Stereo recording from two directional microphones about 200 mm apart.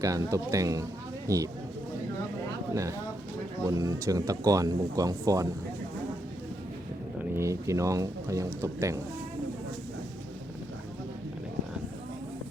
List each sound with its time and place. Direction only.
0.0 s speech: 15° right (ahead or behind)
3.7 s speech: 20° right (ahead or behind)
7.3 s speech: 15° right (ahead or behind)